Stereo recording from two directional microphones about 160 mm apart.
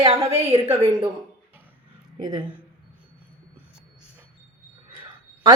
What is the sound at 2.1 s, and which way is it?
Speech, 25° right (ahead or behind).